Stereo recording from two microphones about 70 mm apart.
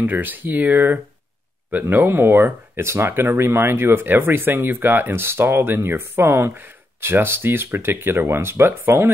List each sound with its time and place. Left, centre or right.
0.0 s speech: right